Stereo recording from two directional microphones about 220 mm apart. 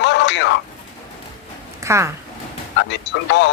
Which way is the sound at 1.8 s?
15° right (ahead or behind).